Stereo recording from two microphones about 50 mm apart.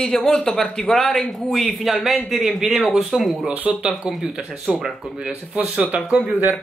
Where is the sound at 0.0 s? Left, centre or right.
Centre.